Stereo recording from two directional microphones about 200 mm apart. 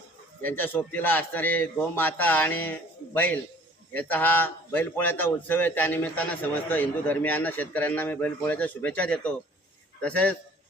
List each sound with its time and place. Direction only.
0.4 s a man's voice: 10° left (ahead or behind)